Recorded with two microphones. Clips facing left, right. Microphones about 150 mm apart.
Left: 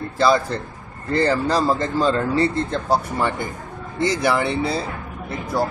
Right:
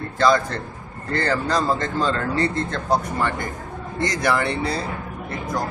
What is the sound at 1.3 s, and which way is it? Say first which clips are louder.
Speech: left 2 dB; 10° left (ahead or behind).